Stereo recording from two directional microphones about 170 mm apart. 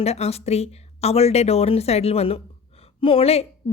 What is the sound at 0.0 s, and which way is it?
Speech, 40° left (ahead or behind).